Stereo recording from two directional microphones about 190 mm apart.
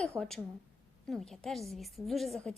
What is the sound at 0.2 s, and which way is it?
A woman's voice, centre (ahead or behind).